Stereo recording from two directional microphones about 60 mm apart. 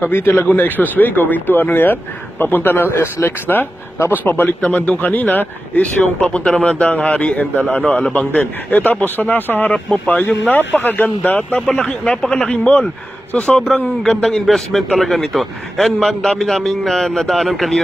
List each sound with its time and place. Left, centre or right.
0.0 s speech: left
4.6 s a man's voice: left
6.2 s a man's voice: centre
8.3 s a man's voice: left
11.6 s a man's voice: centre
13.6 s a man's voice: centre